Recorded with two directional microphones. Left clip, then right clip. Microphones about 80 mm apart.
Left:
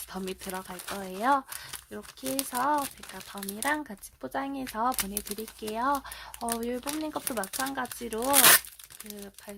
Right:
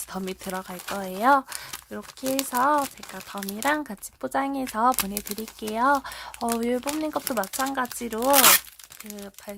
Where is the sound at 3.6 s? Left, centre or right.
Right.